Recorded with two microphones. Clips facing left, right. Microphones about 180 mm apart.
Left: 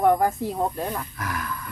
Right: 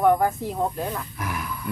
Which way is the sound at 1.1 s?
10° right (ahead or behind).